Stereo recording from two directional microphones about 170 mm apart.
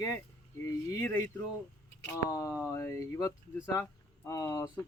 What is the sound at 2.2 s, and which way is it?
Speech, 20° left (ahead or behind).